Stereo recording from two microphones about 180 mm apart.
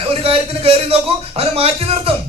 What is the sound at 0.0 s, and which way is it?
A man's voice, 30° right (ahead or behind).